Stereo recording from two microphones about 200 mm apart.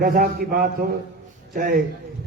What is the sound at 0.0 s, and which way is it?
A man's voice, 50° right (ahead or behind).